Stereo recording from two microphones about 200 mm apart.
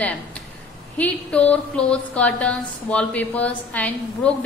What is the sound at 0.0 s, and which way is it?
A woman's voice, 5° left (ahead or behind).